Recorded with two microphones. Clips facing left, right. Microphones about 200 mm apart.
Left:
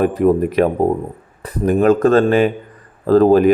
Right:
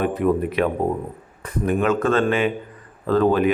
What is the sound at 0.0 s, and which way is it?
Speech, 45° left (ahead or behind).